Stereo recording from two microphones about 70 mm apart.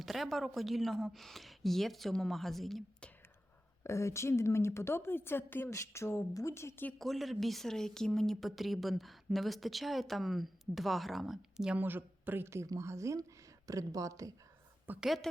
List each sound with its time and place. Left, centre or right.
0.0 s speech: centre
3.8 s a woman's voice: left
5.7 s a woman's voice: left
7.0 s speech: centre
11.8 s a man's voice: right
12.6 s speech: right
15.0 s speech: centre